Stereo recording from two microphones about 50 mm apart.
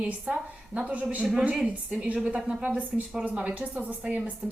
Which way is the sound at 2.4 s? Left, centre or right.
Centre.